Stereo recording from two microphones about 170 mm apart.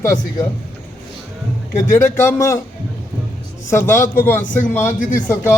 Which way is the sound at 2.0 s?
15° left (ahead or behind).